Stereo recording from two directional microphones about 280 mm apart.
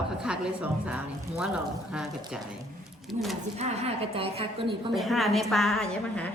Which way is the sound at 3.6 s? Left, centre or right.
Right.